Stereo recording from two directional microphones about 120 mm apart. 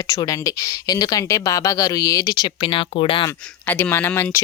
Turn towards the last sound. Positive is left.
turn(degrees=20)  # may be behind; listen again after turning